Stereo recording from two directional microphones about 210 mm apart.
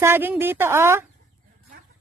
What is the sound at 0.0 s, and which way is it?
Speech, 10° right (ahead or behind).